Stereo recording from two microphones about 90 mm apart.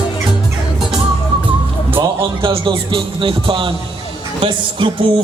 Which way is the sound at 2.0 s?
75° right (ahead or behind).